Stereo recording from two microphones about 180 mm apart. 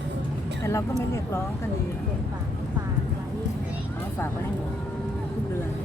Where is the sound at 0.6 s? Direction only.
15° left (ahead or behind).